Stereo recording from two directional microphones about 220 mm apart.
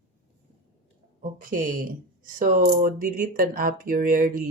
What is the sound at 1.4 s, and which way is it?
Speech, 40° right (ahead or behind).